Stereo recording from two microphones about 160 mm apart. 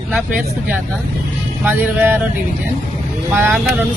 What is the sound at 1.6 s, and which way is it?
Speech, 10° right (ahead or behind).